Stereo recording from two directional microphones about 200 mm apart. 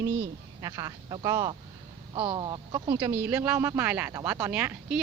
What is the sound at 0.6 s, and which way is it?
Speech, 20° right (ahead or behind).